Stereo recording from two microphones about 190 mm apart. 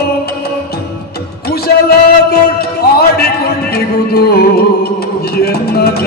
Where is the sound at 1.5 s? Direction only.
55° left (ahead or behind).